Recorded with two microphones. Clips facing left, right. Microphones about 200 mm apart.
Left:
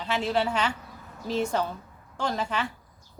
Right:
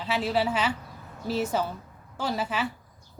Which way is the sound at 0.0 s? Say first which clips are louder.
Even; 5° right (ahead or behind).